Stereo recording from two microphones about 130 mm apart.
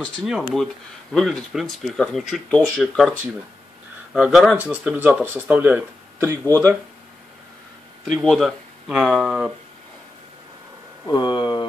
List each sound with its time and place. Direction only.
0.0 s speech: centre (ahead or behind); by 6.7 s 20° right (ahead or behind)
8.0 s speech: 5° left (ahead or behind)
11.1 s speech: 35° left (ahead or behind)